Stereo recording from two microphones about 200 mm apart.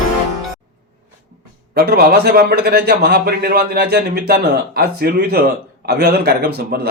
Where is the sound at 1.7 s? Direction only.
50° right (ahead or behind).